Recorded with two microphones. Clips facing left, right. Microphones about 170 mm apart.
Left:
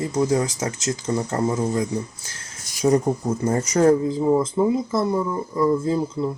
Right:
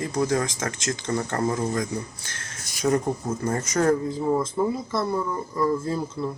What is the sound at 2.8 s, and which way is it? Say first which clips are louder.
Speech: left 4 dB; 25° left (ahead or behind).